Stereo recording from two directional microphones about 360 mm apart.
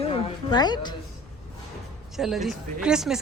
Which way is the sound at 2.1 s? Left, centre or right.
Centre.